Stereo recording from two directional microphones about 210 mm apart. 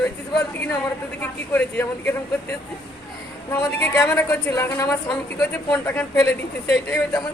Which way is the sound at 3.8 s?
10° left (ahead or behind).